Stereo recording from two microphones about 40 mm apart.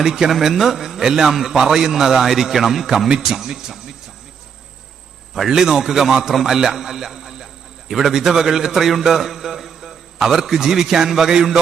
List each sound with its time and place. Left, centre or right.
0.0 s a man's voice: centre
5.5 s a man's voice: centre